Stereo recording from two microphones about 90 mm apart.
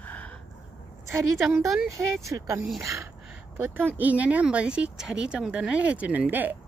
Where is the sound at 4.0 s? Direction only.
15° right (ahead or behind).